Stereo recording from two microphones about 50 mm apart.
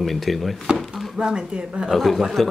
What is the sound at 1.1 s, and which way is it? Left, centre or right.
Speech, centre.